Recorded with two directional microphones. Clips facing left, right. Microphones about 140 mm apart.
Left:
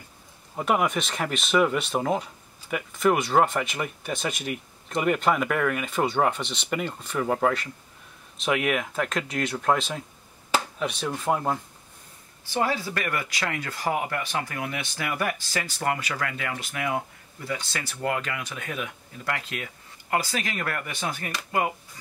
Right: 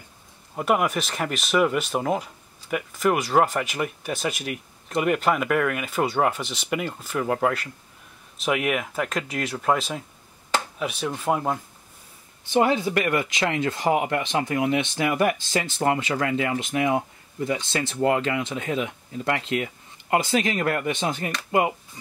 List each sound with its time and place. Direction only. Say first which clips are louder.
0.6 s speech: right 2 dB; 5° right (ahead or behind)
12.4 s speech: right 6 dB; 20° right (ahead or behind)